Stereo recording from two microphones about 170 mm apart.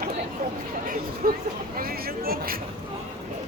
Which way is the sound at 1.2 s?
55° right (ahead or behind).